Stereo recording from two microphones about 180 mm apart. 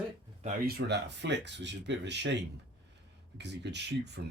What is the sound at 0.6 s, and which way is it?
Speech, 70° right (ahead or behind).